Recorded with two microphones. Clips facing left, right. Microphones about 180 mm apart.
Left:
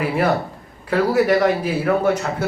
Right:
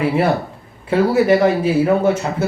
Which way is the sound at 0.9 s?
30° right (ahead or behind).